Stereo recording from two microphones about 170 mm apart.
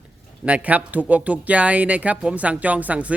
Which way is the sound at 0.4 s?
10° right (ahead or behind).